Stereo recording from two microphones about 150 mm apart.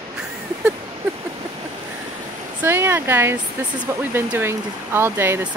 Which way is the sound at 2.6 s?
15° right (ahead or behind).